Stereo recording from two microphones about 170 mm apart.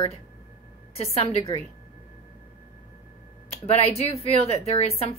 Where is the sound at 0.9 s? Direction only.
35° left (ahead or behind).